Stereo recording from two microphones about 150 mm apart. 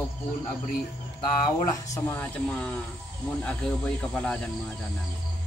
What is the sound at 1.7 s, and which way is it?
Speech, 15° left (ahead or behind).